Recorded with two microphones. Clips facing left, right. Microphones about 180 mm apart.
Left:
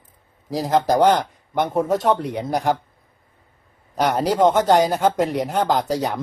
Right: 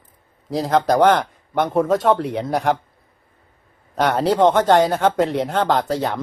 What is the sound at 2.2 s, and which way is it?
Speech, 65° right (ahead or behind).